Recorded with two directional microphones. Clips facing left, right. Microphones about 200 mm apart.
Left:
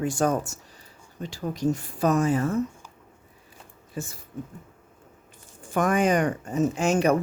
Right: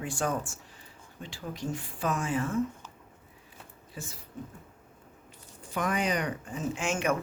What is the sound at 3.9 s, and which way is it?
Speech, 50° left (ahead or behind).